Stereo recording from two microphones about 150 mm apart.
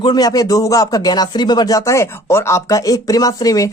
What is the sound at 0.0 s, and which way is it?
Speech, 25° left (ahead or behind).